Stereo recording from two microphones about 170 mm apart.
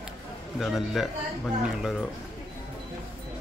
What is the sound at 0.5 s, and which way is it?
Speech, centre (ahead or behind).